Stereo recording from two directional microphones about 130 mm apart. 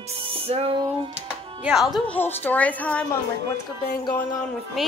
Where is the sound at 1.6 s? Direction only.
5° right (ahead or behind).